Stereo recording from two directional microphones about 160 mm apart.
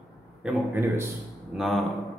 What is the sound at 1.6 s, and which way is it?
Speech, centre (ahead or behind).